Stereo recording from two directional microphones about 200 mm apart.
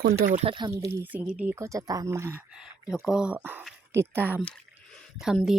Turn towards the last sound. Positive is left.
turn(degrees=0)  # may be behind; listen again after turning